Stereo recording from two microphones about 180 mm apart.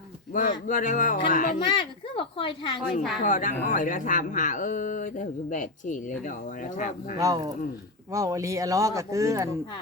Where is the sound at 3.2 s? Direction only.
45° left (ahead or behind).